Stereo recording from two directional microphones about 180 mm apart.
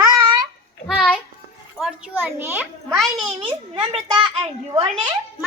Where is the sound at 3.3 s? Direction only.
30° right (ahead or behind).